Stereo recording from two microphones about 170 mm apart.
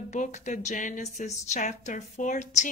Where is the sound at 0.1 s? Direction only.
45° left (ahead or behind).